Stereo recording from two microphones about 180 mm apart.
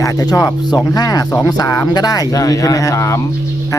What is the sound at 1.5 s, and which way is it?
Speech, 20° left (ahead or behind).